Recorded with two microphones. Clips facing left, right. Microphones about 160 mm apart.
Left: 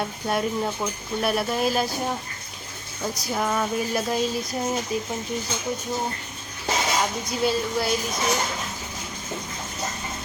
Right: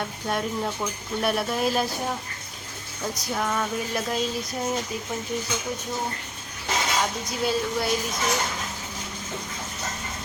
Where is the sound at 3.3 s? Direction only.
10° left (ahead or behind).